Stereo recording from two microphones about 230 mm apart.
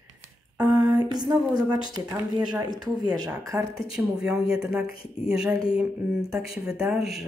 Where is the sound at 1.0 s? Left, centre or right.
Centre.